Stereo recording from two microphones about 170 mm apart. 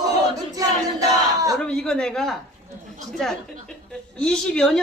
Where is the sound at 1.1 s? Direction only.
20° right (ahead or behind).